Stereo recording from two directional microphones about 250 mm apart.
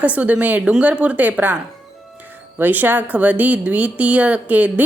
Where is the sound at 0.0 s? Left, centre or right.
Centre.